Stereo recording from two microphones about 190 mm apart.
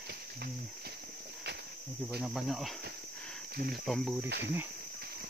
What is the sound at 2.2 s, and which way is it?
Cricket, centre (ahead or behind).